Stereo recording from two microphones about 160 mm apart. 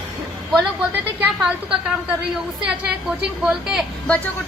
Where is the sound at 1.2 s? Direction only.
10° right (ahead or behind).